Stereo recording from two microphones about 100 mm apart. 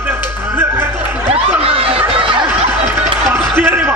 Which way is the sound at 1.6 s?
70° right (ahead or behind).